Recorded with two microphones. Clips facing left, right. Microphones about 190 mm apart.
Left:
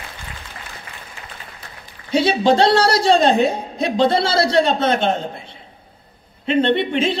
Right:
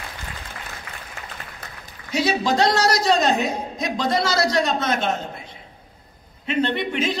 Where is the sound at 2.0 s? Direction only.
30° left (ahead or behind).